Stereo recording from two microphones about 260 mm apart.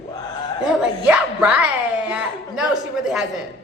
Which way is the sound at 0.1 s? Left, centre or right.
Centre.